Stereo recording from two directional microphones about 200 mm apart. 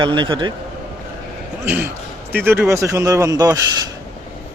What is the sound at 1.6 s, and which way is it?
Speech, 10° right (ahead or behind).